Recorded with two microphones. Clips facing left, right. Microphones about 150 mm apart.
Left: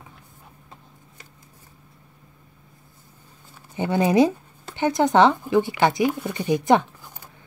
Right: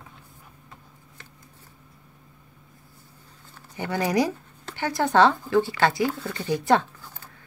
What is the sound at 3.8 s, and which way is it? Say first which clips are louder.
Speech: left 6 dB; 20° left (ahead or behind).